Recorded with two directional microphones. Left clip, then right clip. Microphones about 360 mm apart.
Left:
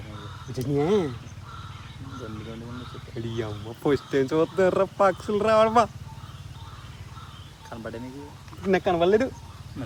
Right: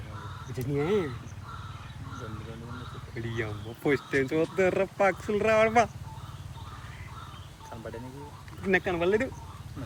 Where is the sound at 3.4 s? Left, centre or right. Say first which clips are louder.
Left 3 dB; centre.